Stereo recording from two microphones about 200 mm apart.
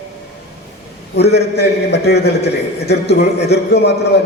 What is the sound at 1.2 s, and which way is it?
A man's voice, 55° left (ahead or behind).